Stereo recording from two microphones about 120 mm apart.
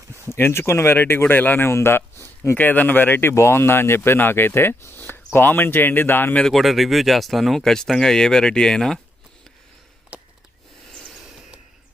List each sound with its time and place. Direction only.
0.3 s speech: 20° left (ahead or behind)
6.4 s speech: centre (ahead or behind)